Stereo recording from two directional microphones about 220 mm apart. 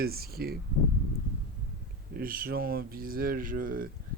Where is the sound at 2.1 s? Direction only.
40° right (ahead or behind).